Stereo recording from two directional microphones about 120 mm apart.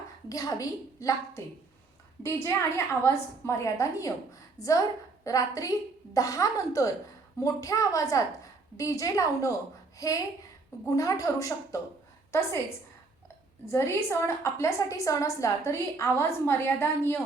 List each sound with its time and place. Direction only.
0.3 s a woman's voice: 30° left (ahead or behind)
13.7 s a woman's voice: 25° left (ahead or behind)